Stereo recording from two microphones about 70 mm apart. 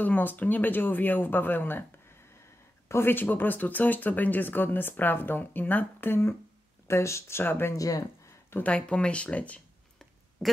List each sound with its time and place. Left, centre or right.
0.0 s speech: left
2.9 s speech: left
6.9 s speech: left
7.7 s speech: left
8.6 s speech: centre